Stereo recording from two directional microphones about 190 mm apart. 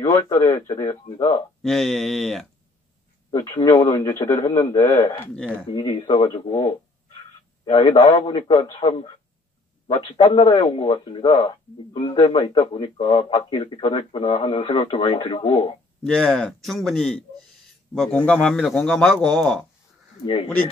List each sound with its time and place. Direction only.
0.0 s a man's voice: 15° left (ahead or behind)
1.6 s a man's voice: centre (ahead or behind)
3.3 s a man's voice: 20° left (ahead or behind)
5.7 s speech: 25° left (ahead or behind)
8.0 s a man's voice: 30° left (ahead or behind)
16.0 s a man's voice: 5° left (ahead or behind)